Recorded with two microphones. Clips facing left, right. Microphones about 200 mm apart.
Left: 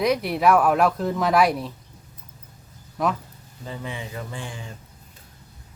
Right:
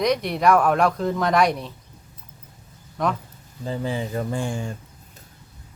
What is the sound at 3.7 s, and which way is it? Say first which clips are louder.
Speech: right 7 dB; 35° right (ahead or behind).